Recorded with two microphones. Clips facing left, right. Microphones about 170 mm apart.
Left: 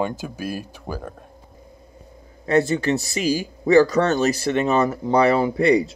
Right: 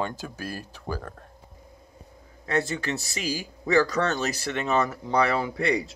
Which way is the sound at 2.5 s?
20° left (ahead or behind).